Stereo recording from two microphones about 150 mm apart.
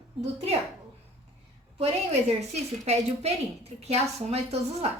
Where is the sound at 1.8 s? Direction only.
45° right (ahead or behind).